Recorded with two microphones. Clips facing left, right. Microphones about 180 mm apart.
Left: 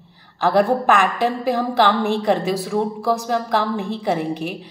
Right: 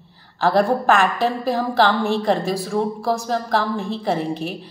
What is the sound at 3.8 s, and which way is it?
Speech, 15° left (ahead or behind).